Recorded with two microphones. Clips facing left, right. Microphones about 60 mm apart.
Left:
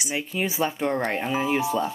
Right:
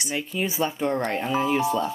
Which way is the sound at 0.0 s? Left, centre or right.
Centre.